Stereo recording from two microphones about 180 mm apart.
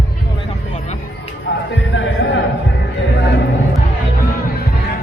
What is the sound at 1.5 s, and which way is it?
Speech, 75° left (ahead or behind).